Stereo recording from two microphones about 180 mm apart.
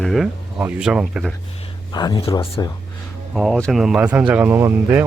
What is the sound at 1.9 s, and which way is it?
Speech, 25° left (ahead or behind).